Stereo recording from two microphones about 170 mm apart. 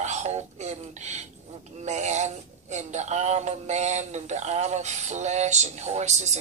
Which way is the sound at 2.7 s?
40° right (ahead or behind).